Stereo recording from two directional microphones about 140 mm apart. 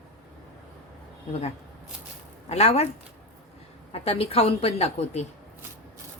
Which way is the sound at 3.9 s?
45° left (ahead or behind).